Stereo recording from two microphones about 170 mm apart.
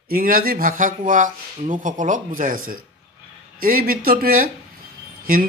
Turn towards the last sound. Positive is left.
turn(degrees=-55)  # may be behind; listen again after turning